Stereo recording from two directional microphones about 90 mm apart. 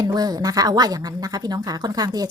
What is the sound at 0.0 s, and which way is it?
Speech, 45° right (ahead or behind).